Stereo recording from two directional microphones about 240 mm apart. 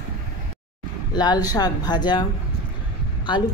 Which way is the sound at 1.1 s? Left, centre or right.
Centre.